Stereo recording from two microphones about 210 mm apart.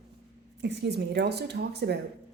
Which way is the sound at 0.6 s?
55° right (ahead or behind).